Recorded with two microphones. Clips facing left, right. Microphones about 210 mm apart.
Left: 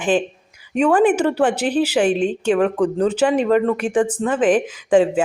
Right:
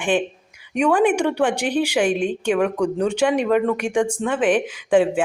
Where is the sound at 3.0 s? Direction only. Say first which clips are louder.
Left 3 dB; 5° left (ahead or behind).